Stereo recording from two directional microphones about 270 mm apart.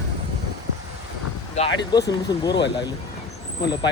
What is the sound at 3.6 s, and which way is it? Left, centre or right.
Speech, centre.